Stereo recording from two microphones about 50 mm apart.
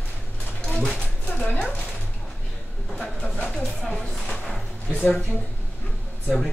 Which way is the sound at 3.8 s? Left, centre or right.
Centre.